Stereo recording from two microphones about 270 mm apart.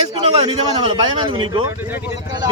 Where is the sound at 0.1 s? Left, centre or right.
Right.